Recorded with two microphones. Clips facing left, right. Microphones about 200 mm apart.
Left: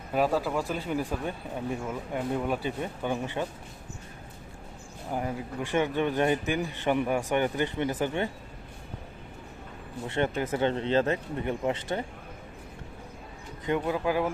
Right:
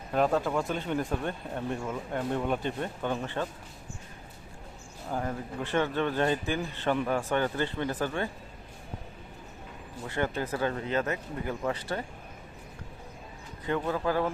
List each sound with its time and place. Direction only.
0.1 s speech: 5° left (ahead or behind)
5.1 s speech: 10° left (ahead or behind)
10.1 s speech: 25° left (ahead or behind)
13.7 s speech: 15° left (ahead or behind)